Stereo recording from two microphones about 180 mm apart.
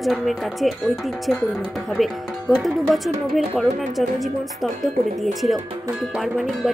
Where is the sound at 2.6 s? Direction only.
Centre (ahead or behind).